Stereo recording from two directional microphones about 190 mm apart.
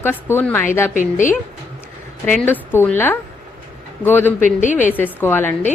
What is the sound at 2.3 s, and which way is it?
A woman's voice, 10° left (ahead or behind).